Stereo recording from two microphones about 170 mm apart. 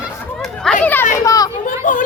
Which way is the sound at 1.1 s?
20° left (ahead or behind).